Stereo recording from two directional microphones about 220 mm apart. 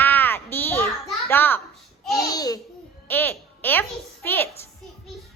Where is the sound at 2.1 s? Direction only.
15° left (ahead or behind).